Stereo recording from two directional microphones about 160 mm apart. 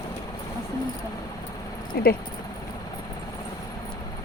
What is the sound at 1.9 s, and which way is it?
Speech, 75° left (ahead or behind).